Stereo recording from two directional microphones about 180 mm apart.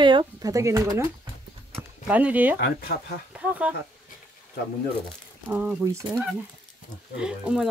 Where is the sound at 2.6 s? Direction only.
55° left (ahead or behind).